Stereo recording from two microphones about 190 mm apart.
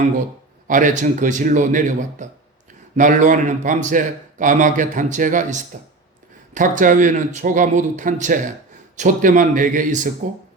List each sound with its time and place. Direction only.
0.7 s speech: 45° right (ahead or behind)